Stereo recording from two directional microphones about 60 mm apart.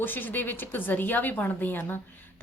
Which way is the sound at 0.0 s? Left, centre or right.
Left.